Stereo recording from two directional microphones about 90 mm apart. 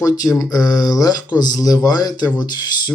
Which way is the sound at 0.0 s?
40° left (ahead or behind).